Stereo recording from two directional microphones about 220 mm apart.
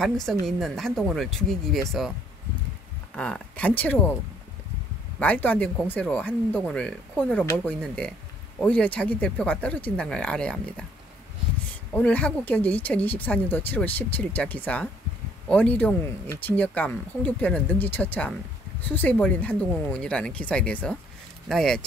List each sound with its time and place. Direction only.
0.0 s speech: centre (ahead or behind)
3.2 s speech: 5° left (ahead or behind)
5.2 s speech: 10° left (ahead or behind)
11.9 s speech: 5° left (ahead or behind)